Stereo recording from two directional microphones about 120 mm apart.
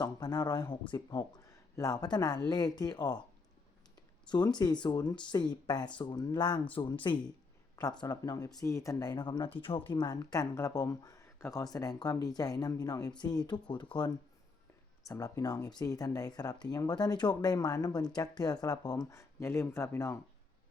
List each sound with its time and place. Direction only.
0.0 s speech: 35° left (ahead or behind)
4.5 s speech: 35° left (ahead or behind)
8.0 s speech: 30° left (ahead or behind)